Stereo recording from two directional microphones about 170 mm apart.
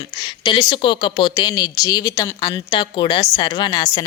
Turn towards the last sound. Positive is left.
turn(degrees=25)  # may be behind; listen again after turning